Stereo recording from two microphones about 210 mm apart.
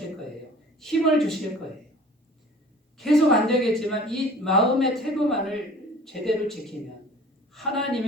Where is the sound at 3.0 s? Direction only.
Centre (ahead or behind).